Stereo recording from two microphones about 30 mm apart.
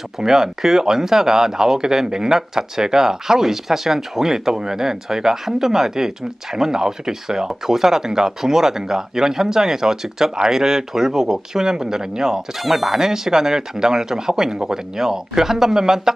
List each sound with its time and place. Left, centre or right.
0.2 s speech: centre
12.9 s speech: centre